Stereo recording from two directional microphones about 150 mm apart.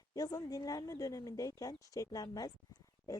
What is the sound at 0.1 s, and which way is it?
Speech, 25° left (ahead or behind).